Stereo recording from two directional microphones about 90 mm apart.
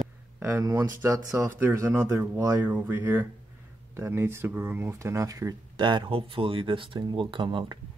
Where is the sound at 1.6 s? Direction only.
25° right (ahead or behind).